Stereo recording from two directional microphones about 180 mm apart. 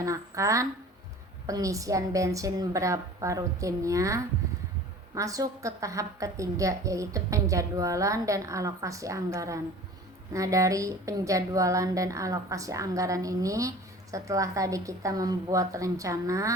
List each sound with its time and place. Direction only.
0.0 s a woman's voice: 15° right (ahead or behind)